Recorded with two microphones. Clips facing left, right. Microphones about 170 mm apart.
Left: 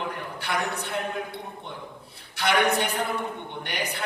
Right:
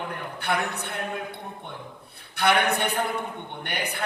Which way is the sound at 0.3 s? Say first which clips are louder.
Right 2 dB; 60° right (ahead or behind).